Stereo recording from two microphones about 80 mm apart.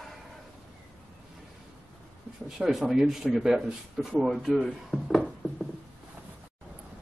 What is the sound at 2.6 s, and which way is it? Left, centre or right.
Speech, centre.